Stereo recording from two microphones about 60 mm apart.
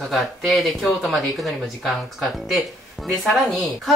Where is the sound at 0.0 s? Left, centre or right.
Centre.